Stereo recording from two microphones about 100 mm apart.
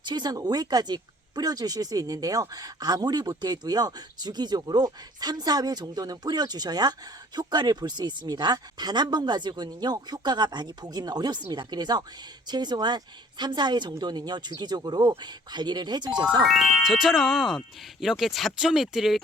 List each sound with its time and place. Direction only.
0.0 s speech: 45° right (ahead or behind)
16.4 s speech: centre (ahead or behind)